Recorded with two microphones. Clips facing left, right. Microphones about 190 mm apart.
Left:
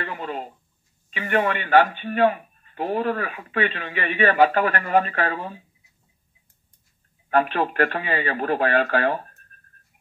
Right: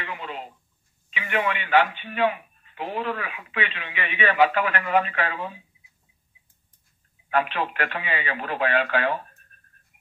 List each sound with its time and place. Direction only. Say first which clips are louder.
0.0 s a sound: left 4 dB; 45° left (ahead or behind)
1.1 s a man's voice: left 4 dB; 45° left (ahead or behind)
7.2 s a man's voice: left 4 dB; 45° left (ahead or behind)